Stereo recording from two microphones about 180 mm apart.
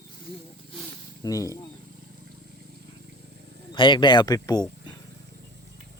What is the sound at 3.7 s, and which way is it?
Speech, 25° left (ahead or behind).